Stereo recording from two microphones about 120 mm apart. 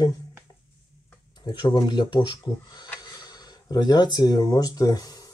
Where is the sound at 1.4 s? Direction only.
40° left (ahead or behind).